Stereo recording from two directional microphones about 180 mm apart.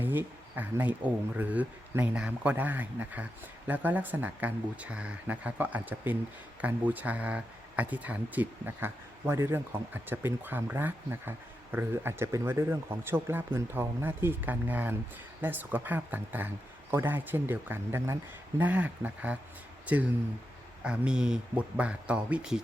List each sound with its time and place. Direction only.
0.0 s speech: 10° right (ahead or behind)